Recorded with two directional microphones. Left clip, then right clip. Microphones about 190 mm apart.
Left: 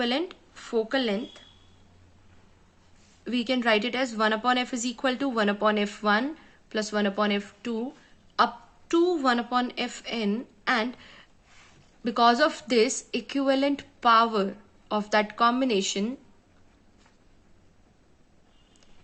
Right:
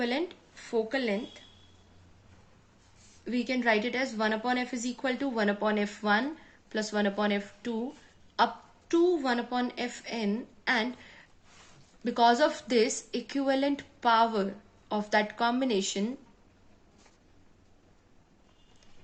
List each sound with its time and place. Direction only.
0.0 s speech: 35° left (ahead or behind)
3.2 s a woman's voice: 35° left (ahead or behind)
8.9 s a woman's voice: 40° left (ahead or behind)